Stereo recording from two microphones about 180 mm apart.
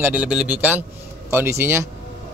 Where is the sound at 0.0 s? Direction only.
5° right (ahead or behind).